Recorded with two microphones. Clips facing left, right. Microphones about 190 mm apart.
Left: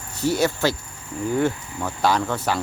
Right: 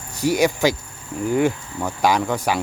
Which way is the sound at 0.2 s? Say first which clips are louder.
Right 3 dB; 10° right (ahead or behind).